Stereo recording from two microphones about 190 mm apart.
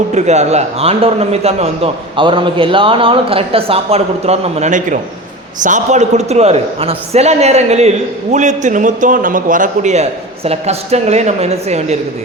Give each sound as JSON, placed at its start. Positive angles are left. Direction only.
{"t": 0.1, "sound": "a man's voice", "side_deg": -35}